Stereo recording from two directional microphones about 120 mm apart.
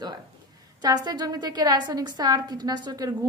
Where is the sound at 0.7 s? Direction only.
35° right (ahead or behind).